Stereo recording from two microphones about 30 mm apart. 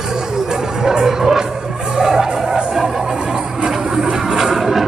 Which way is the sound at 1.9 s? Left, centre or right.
Centre.